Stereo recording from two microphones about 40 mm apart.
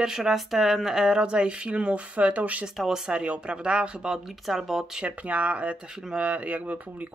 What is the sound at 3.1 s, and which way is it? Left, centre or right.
Speech, right.